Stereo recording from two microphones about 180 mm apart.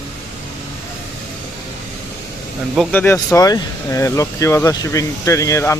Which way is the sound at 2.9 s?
10° left (ahead or behind).